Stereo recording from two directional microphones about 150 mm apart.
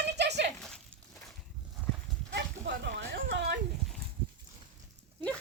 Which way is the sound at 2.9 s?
90° right.